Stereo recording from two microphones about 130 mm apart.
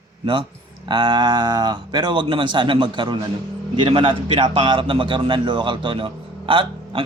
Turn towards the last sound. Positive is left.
turn(degrees=-40)  # may be behind; listen again after turning